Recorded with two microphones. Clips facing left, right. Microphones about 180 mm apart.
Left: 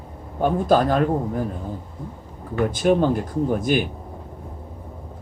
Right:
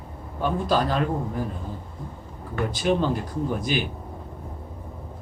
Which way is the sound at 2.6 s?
50° left (ahead or behind).